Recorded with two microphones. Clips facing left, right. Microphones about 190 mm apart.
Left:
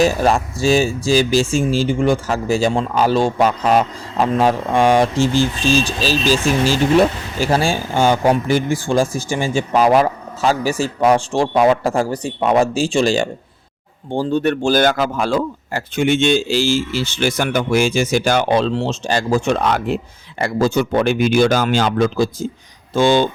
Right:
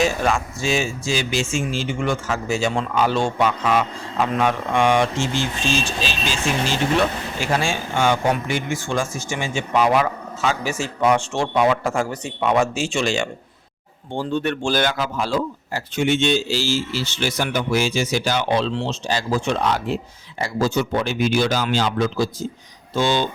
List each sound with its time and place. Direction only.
0.0 s a man's voice: 35° left (ahead or behind)